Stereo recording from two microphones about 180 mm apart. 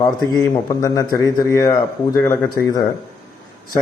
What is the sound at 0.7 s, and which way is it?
A man's voice, 20° left (ahead or behind).